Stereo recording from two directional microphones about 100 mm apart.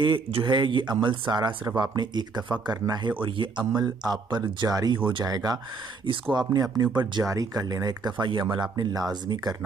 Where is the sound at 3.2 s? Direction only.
55° right (ahead or behind).